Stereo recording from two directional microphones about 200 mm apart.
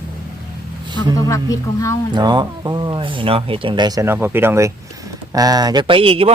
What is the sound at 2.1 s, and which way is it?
Speech, 20° right (ahead or behind).